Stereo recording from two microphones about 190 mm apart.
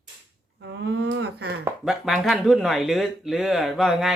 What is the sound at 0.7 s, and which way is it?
Speech, 70° right (ahead or behind).